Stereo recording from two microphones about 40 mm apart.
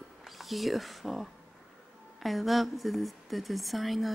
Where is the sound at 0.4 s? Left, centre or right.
Centre.